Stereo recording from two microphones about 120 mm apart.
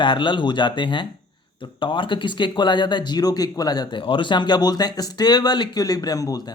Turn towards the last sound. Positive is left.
turn(degrees=30)  # may be behind; listen again after turning